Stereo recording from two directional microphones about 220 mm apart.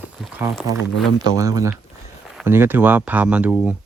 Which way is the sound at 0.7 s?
15° right (ahead or behind).